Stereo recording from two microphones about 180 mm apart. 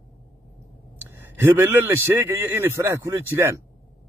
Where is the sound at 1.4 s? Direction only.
10° right (ahead or behind).